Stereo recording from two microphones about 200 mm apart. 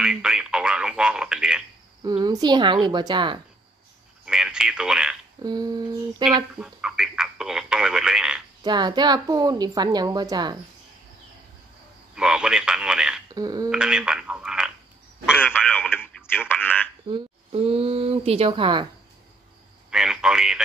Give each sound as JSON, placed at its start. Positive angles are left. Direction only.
{"t": 0.0, "sound": "speech", "side_deg": -5}
{"t": 2.0, "sound": "a woman's voice", "side_deg": -20}
{"t": 4.3, "sound": "speech", "side_deg": -5}
{"t": 5.4, "sound": "a woman's voice", "side_deg": -20}
{"t": 6.6, "sound": "speech", "side_deg": -5}
{"t": 8.6, "sound": "a woman's voice", "side_deg": -20}
{"t": 12.2, "sound": "speech", "side_deg": -5}
{"t": 13.3, "sound": "a woman's voice", "side_deg": -20}
{"t": 13.7, "sound": "speech", "side_deg": -5}
{"t": 15.5, "sound": "speech", "side_deg": 10}
{"t": 17.1, "sound": "a woman's voice", "side_deg": -30}
{"t": 19.9, "sound": "speech", "side_deg": -5}